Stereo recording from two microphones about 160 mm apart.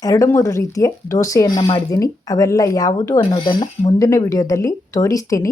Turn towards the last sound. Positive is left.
turn(degrees=20)  # may be behind; listen again after turning